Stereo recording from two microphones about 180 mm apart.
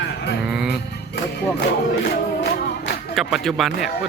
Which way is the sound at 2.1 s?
70° left (ahead or behind).